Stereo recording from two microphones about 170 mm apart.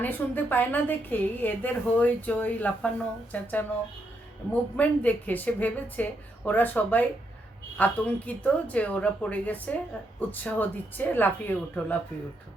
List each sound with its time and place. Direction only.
0.0 s a woman's voice: 10° left (ahead or behind)
4.8 s a woman's voice: 10° left (ahead or behind)